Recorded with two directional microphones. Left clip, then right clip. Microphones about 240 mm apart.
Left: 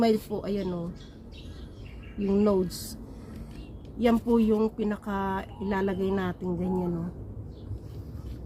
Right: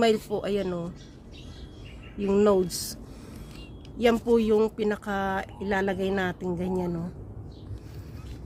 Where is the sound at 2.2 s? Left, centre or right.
Right.